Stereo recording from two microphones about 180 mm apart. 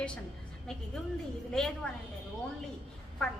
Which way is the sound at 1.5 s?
5° left (ahead or behind).